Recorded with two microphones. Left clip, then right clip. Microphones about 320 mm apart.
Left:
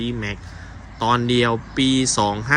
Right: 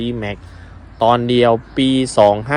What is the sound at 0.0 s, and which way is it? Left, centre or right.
Speech, centre.